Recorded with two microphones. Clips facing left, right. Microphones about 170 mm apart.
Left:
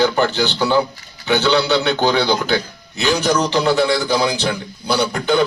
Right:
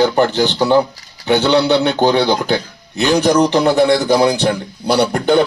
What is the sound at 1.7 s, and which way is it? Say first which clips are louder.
Speech: right 3 dB; 15° right (ahead or behind).